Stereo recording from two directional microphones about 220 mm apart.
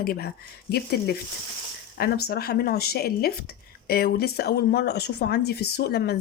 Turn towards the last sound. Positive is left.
turn(degrees=45)  # may be behind; listen again after turning